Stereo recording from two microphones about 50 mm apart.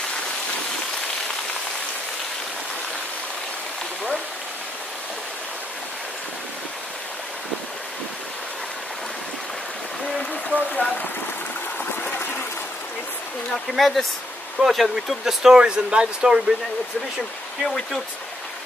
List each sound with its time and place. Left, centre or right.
10.5 s a sound: left
13.5 s speech: centre
15.5 s speech: centre